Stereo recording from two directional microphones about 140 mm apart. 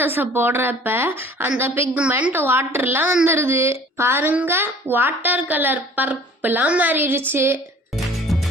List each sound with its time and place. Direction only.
0.0 s a child's voice: 15° right (ahead or behind)
7.9 s music: centre (ahead or behind)